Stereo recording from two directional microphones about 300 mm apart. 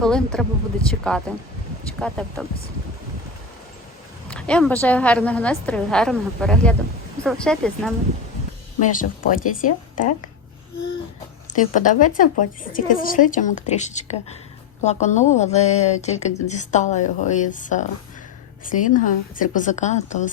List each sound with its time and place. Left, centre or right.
0.0 s a woman's voice: centre
4.3 s a woman's voice: centre
8.8 s a woman's voice: left
11.4 s a woman's voice: left